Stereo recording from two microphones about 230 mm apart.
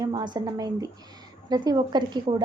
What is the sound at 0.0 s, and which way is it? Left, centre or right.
A woman's voice, centre.